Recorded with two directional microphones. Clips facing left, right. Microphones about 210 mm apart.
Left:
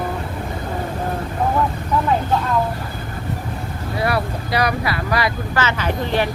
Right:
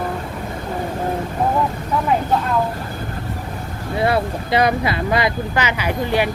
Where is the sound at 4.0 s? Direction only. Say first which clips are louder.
Right 3 dB; 25° right (ahead or behind).